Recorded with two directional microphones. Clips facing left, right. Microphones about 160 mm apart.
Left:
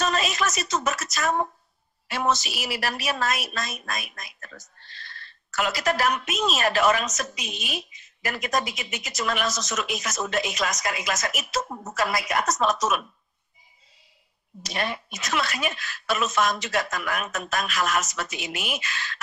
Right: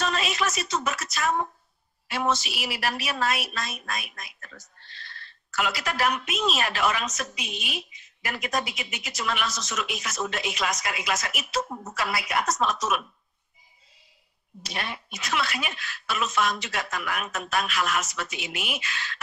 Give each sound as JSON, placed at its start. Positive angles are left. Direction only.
{"t": 0.0, "sound": "a sound", "side_deg": 45}
{"t": 2.0, "sound": "a woman's voice", "side_deg": 40}
{"t": 14.6, "sound": "a woman's voice", "side_deg": 40}